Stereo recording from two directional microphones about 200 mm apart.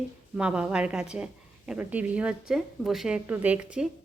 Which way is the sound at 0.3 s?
5° right (ahead or behind).